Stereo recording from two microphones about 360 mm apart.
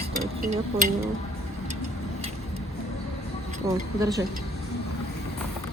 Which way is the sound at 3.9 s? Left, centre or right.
Centre.